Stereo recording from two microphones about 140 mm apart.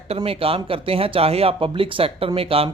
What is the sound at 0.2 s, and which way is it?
Speech, 40° right (ahead or behind).